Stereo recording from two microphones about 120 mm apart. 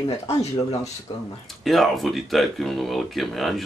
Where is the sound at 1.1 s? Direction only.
40° left (ahead or behind).